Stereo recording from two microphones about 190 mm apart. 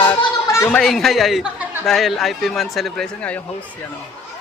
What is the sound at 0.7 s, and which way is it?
Speech, centre (ahead or behind).